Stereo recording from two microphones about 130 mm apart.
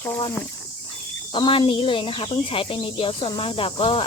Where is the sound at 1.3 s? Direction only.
40° left (ahead or behind).